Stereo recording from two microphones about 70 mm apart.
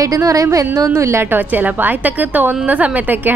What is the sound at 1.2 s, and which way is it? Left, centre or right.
Speech, right.